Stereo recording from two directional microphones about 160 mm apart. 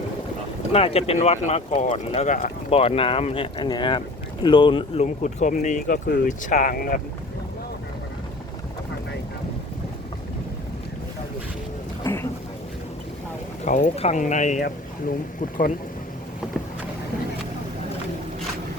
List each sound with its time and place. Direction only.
0.7 s speech: 40° left (ahead or behind)
5.0 s speech: 50° left (ahead or behind)
12.0 s a sound: 15° left (ahead or behind)
13.7 s speech: 45° left (ahead or behind)